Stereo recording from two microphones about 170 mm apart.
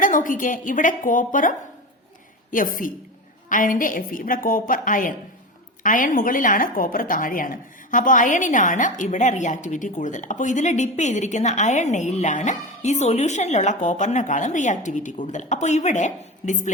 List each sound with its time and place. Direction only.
0.0 s a woman's voice: 50° left (ahead or behind)